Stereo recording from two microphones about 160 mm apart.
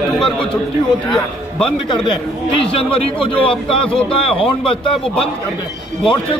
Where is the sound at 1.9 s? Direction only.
30° left (ahead or behind).